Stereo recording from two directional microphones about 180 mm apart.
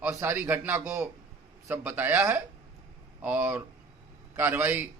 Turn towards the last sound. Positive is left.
turn(degrees=-10)  # may be behind; listen again after turning